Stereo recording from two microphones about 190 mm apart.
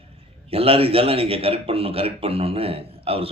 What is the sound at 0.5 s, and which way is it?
Speech, 30° right (ahead or behind).